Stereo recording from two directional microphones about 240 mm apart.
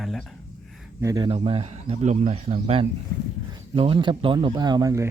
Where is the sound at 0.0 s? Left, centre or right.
Centre.